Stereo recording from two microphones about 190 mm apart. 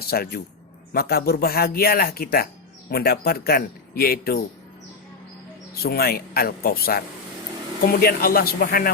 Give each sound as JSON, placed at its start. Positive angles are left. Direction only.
{"t": 0.0, "sound": "speech", "side_deg": 55}
{"t": 5.8, "sound": "speech", "side_deg": 55}